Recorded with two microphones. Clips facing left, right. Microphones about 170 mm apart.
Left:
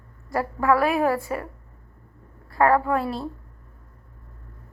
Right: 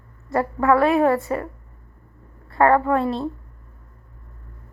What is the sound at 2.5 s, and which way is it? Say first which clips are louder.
Speech: right 3 dB; 5° left (ahead or behind).